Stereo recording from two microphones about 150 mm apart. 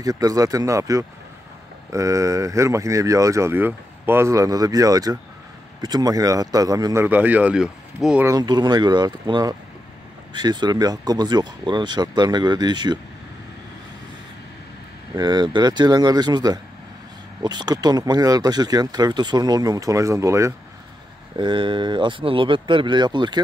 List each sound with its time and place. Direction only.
0.0 s speech: 25° right (ahead or behind); by 8.3 s 5° right (ahead or behind)
8.3 s speech: 30° right (ahead or behind)
15.1 s speech: 30° right (ahead or behind)
21.4 s speech: 35° right (ahead or behind)